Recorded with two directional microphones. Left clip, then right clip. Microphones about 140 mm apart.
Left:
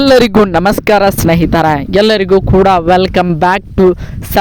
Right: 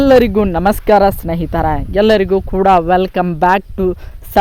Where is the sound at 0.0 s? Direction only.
85° left.